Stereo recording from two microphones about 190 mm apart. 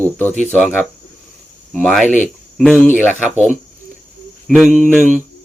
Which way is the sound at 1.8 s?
Centre (ahead or behind).